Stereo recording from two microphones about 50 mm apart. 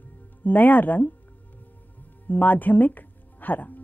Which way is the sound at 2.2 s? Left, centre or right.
Left.